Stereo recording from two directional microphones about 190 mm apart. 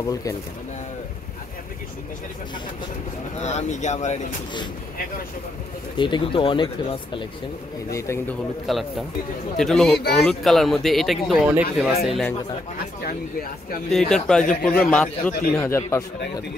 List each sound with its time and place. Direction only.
0.1 s speech: 20° left (ahead or behind)
3.3 s speech: 35° left (ahead or behind)
5.9 s speech: 25° left (ahead or behind)
7.9 s speech: 15° left (ahead or behind)
8.6 s speech: centre (ahead or behind)
13.0 s speech: 50° left (ahead or behind)
13.9 s speech: 5° left (ahead or behind)